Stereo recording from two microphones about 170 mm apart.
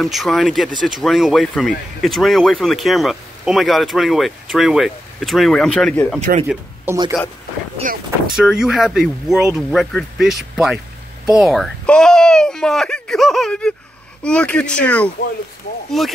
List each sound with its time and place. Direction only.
0.0 s speech: centre (ahead or behind)
6.4 s speech: 5° right (ahead or behind)
7.8 s speech: 50° right (ahead or behind)
8.4 s speech: 5° right (ahead or behind)